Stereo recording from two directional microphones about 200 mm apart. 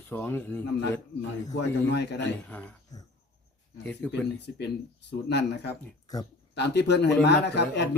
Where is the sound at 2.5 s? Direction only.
10° left (ahead or behind).